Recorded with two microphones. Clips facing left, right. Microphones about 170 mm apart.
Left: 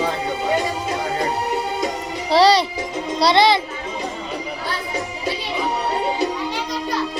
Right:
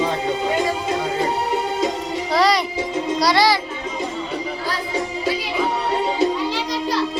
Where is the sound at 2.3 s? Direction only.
30° left (ahead or behind).